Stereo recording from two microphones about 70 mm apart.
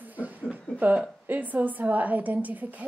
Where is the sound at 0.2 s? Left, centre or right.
Right.